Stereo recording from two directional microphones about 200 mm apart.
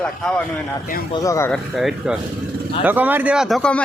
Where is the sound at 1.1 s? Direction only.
15° left (ahead or behind).